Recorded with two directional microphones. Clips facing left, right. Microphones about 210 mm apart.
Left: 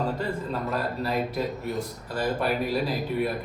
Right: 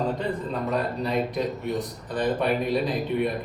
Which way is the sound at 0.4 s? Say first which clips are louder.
Right 2 dB; centre (ahead or behind).